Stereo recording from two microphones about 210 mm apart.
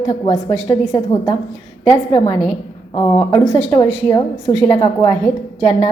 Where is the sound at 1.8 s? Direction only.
25° left (ahead or behind).